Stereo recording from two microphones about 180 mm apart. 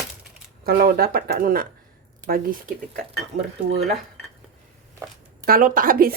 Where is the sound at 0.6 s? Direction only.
50° right (ahead or behind).